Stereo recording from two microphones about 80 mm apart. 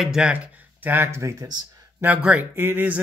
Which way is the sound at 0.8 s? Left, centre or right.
Right.